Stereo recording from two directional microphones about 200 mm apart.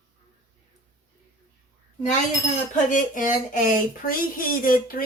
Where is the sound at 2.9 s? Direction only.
40° left (ahead or behind).